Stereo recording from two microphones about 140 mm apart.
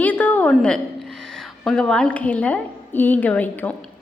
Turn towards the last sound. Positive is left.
turn(degrees=10)  # may be behind; listen again after turning